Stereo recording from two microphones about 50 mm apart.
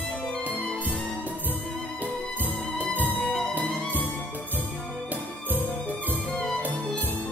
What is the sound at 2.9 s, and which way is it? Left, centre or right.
Music, left.